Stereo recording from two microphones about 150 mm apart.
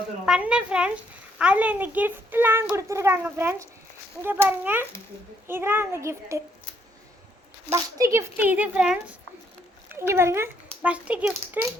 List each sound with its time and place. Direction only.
0.3 s a child's voice: 5° right (ahead or behind)
7.7 s a child's voice: 20° right (ahead or behind)